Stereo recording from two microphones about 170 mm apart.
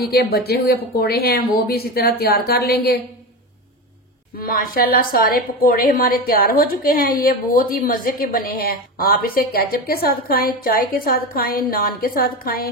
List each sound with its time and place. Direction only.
0.0 s a woman's voice: 70° left (ahead or behind)
4.4 s a woman's voice: 55° left (ahead or behind)